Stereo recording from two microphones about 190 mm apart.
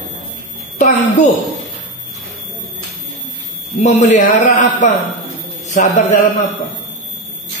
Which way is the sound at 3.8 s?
35° left (ahead or behind).